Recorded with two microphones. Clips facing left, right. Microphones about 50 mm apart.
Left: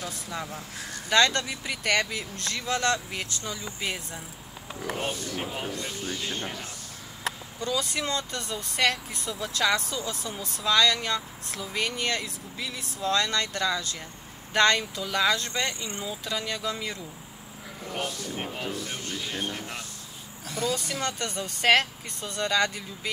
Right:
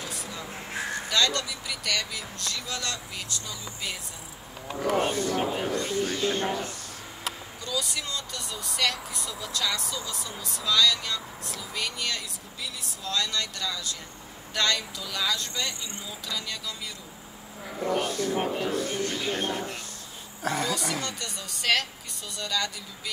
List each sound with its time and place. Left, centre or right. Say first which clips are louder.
0.5 s a sound: right 5 dB; right
1.1 s speech: left 5 dB; left
4.8 s speech: right 6 dB; right
5.4 s speech: right 5 dB; right
5.7 s speech: right 6 dB; right
7.2 s speech: left 5 dB; left
18.0 s speech: right 6 dB; right
20.4 s speech: right 2 dB; right
21.0 s speech: left 5 dB; left